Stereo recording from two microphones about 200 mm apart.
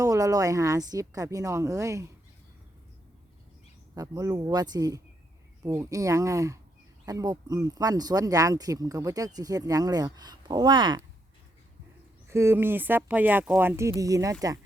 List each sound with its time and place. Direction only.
0.0 s a woman's voice: 15° right (ahead or behind)
3.9 s a woman's voice: 20° right (ahead or behind)
12.3 s a woman's voice: 10° right (ahead or behind)